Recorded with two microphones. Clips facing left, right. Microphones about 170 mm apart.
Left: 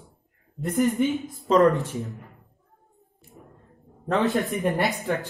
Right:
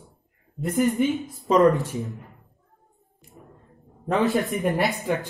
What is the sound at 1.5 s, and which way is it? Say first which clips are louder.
Speech: right 1 dB; 20° right (ahead or behind).